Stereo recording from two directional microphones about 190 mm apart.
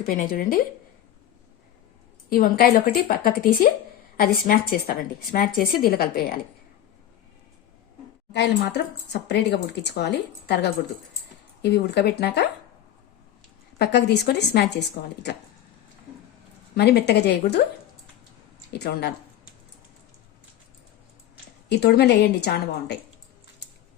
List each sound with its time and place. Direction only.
0.0 s speech: 45° left (ahead or behind)
2.3 s speech: 50° left (ahead or behind)
8.3 s speech: 65° left (ahead or behind)
13.7 s speech: 60° left (ahead or behind)
16.7 s speech: 60° left (ahead or behind)
18.7 s speech: 60° left (ahead or behind)
21.7 s speech: 60° left (ahead or behind)